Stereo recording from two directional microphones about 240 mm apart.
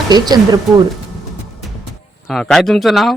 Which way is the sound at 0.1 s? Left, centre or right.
Centre.